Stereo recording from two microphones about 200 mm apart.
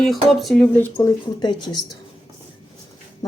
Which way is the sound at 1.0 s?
20° left (ahead or behind).